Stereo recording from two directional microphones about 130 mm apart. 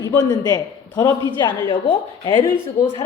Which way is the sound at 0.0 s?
30° left (ahead or behind).